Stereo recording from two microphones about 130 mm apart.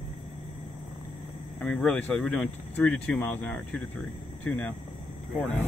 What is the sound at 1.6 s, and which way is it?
Speech, 5° left (ahead or behind).